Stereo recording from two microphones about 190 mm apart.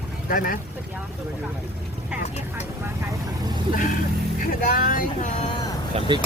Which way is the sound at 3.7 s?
45° left (ahead or behind).